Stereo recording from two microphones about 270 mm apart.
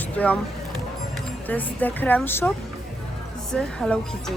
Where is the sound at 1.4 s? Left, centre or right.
Centre.